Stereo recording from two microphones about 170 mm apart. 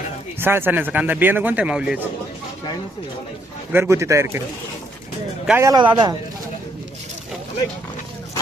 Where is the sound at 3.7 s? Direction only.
15° right (ahead or behind).